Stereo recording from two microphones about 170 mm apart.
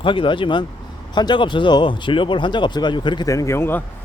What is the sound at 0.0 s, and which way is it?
Speech, 30° left (ahead or behind).